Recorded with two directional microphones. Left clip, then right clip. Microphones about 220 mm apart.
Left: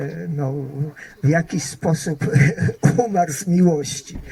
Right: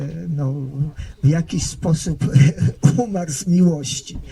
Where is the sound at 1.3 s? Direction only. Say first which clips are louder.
Left 8 dB; 40° right (ahead or behind).